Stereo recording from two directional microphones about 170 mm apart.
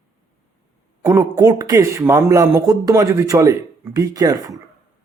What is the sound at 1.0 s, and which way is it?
Speech, 20° right (ahead or behind).